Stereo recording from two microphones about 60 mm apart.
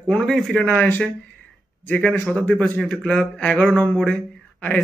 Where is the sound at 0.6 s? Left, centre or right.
Left.